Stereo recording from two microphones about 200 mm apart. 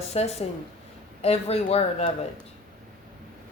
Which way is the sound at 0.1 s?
30° left (ahead or behind).